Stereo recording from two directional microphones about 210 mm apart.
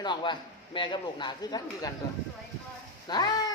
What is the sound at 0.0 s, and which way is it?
A man's voice, 20° left (ahead or behind).